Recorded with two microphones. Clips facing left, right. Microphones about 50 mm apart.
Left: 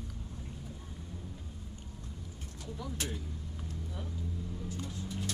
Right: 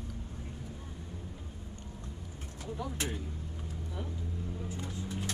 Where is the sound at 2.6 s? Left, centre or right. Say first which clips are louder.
Right 3 dB; right.